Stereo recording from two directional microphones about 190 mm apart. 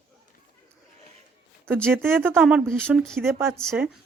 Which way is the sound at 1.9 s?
10° right (ahead or behind).